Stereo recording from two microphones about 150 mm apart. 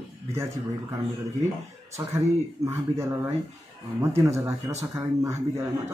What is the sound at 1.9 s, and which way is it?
Speech, 20° right (ahead or behind).